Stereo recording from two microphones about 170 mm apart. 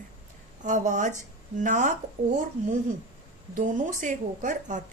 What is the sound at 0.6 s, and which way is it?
Speech, 45° right (ahead or behind).